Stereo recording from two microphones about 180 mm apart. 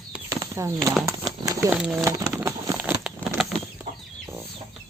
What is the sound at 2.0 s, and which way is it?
Crumpling, 15° right (ahead or behind).